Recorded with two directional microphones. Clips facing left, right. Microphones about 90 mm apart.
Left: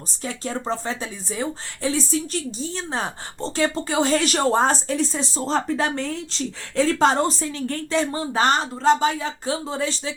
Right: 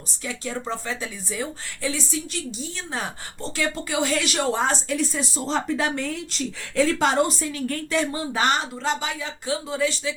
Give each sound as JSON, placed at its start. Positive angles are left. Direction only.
{"t": 0.2, "sound": "a woman's voice", "side_deg": 35}